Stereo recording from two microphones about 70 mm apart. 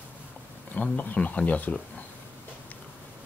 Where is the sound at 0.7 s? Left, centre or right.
Left.